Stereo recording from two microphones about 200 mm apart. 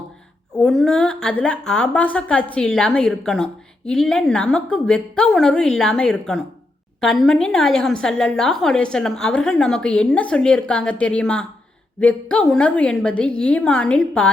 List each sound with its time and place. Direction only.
0.5 s a woman's voice: 5° left (ahead or behind)